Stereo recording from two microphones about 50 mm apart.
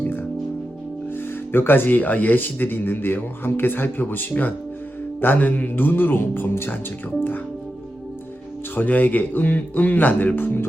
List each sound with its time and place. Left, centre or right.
0.0 s music: left
1.1 s speech: left
8.7 s speech: left